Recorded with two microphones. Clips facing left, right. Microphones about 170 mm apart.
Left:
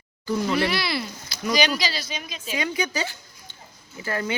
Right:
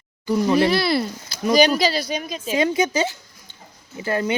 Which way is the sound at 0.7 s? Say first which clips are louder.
Right 7 dB; 50° right (ahead or behind).